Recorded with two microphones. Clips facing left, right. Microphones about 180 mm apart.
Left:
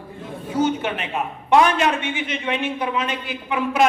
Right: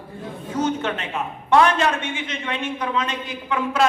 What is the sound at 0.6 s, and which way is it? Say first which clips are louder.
A woman's voice: left 2 dB; 10° left (ahead or behind).